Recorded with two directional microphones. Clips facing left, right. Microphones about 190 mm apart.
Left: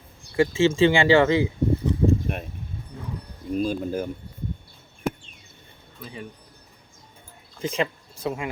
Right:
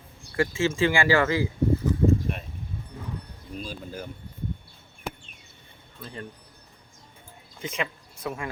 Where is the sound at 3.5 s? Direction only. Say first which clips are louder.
Left 11 dB; 50° left (ahead or behind).